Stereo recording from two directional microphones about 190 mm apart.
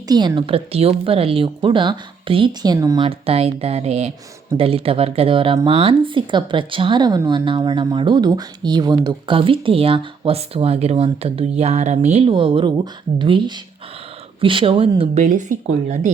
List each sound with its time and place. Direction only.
0.1 s a woman's voice: 20° right (ahead or behind)
15.2 s speech: 40° right (ahead or behind)